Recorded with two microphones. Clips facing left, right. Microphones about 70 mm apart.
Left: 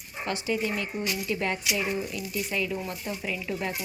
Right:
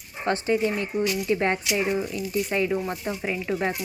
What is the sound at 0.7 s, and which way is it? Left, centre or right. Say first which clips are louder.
Speech: right 5 dB; centre.